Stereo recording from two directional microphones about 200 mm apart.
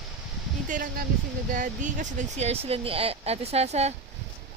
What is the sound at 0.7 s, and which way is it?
A woman's voice, 45° right (ahead or behind).